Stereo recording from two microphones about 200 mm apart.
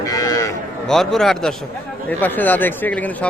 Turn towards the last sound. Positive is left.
turn(degrees=5)  # may be behind; listen again after turning